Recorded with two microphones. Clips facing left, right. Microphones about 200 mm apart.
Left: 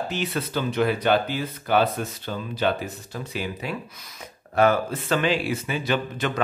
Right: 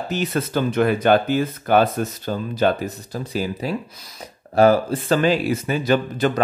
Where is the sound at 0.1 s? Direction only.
40° right (ahead or behind).